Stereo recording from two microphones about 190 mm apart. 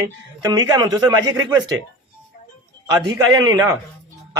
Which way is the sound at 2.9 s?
20° right (ahead or behind).